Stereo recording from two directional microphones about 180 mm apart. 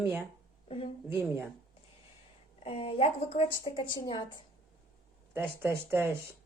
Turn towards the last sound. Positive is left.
turn(degrees=-10)  # may be behind; listen again after turning